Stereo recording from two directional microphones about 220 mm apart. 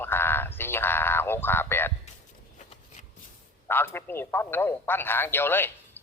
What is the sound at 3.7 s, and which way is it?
Speech, 10° left (ahead or behind).